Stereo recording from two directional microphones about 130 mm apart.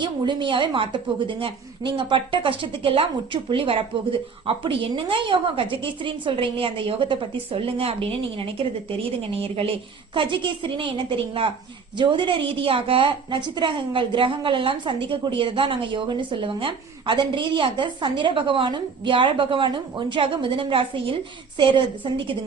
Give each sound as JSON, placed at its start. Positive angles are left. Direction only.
{"t": 0.0, "sound": "a woman's voice", "side_deg": -35}